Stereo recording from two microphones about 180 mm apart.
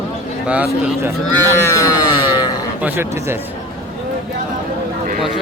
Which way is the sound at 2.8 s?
15° right (ahead or behind).